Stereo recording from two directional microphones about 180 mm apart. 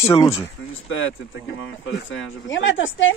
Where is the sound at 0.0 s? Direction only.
15° left (ahead or behind).